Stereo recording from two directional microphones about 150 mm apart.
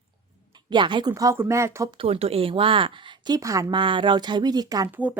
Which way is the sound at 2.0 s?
40° right (ahead or behind).